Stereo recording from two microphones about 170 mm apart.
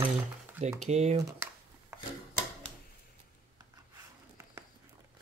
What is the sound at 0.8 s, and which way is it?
Speech, 40° right (ahead or behind).